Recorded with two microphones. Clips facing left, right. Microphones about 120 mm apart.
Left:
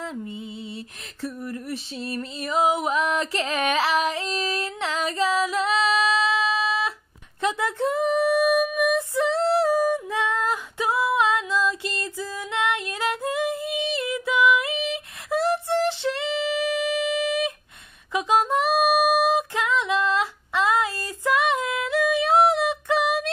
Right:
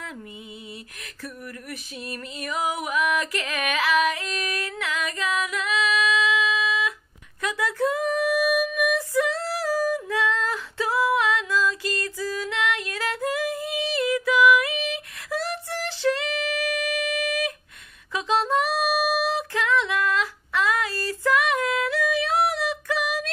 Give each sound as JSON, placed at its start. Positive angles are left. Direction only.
{"t": 1.2, "sound": "music", "side_deg": 25}
{"t": 7.4, "sound": "female singing", "side_deg": 25}
{"t": 18.1, "sound": "music", "side_deg": 15}